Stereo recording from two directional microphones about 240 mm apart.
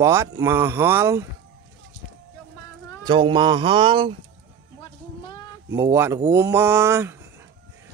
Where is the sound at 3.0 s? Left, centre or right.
Centre.